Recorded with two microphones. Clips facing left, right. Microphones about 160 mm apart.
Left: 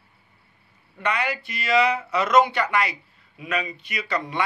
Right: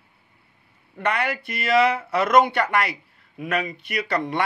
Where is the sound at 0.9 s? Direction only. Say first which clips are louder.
Right 2 dB; 55° right (ahead or behind).